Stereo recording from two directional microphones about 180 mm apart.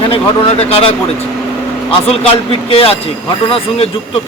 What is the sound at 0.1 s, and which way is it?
Speech, 35° left (ahead or behind).